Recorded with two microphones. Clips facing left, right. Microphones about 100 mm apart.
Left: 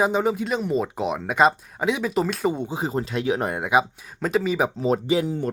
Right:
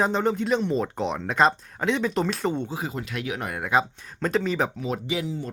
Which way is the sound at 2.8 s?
35° left (ahead or behind).